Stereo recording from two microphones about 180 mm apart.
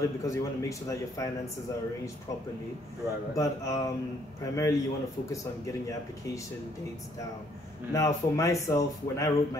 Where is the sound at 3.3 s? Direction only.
15° left (ahead or behind).